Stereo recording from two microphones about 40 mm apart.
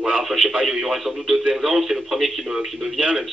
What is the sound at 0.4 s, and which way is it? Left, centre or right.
Speech, centre.